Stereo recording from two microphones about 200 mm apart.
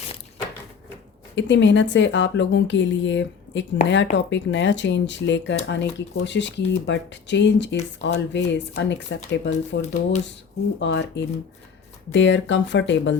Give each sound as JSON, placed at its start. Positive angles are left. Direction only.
{"t": 1.4, "sound": "a woman's voice", "side_deg": 65}